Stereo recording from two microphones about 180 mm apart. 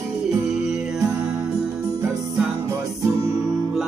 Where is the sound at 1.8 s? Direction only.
15° right (ahead or behind).